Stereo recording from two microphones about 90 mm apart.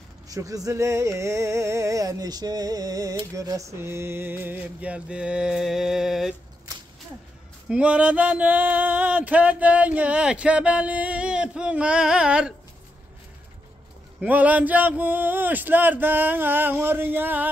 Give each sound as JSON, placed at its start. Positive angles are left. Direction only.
{"t": 0.3, "sound": "music", "side_deg": -40}
{"t": 7.7, "sound": "male singing", "side_deg": -15}
{"t": 14.2, "sound": "speech", "side_deg": -15}